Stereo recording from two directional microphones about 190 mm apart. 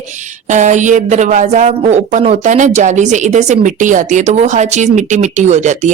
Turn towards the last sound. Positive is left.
turn(degrees=-40)  # may be behind; listen again after turning